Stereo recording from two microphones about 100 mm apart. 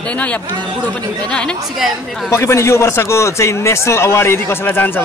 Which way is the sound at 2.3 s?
25° left (ahead or behind).